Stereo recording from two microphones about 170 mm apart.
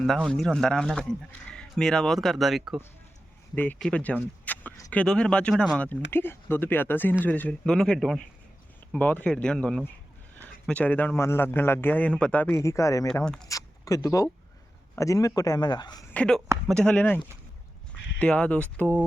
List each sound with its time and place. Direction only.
0.0 s speech: centre (ahead or behind)
3.5 s a man's voice: 10° left (ahead or behind)
13.2 s speech: 5° left (ahead or behind)
13.5 s zipper: 20° left (ahead or behind)
14.9 s speech: 20° left (ahead or behind)
16.1 s speech: 5° left (ahead or behind)
18.2 s speech: 10° left (ahead or behind)